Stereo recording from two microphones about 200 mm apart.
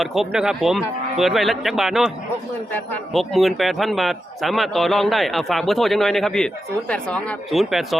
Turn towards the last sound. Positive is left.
turn(degrees=0)  # may be behind; listen again after turning